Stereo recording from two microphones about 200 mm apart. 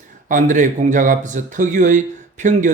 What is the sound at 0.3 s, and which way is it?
Speech, 40° right (ahead or behind).